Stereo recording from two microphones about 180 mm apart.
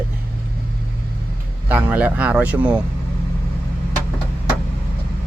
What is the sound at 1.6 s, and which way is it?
Speech, 10° right (ahead or behind).